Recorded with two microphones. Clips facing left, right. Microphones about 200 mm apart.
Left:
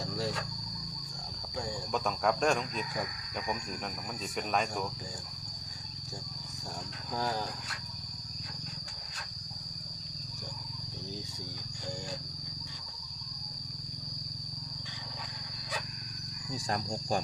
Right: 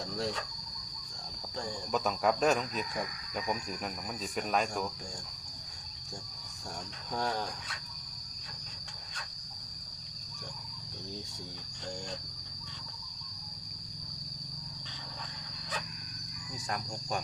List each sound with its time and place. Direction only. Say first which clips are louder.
0.1 s cricket: right 1 dB; centre (ahead or behind)
1.9 s speech: right 1 dB; centre (ahead or behind)
7.2 s speech: even; centre (ahead or behind)
16.6 s speech: left 4 dB; 30° left (ahead or behind)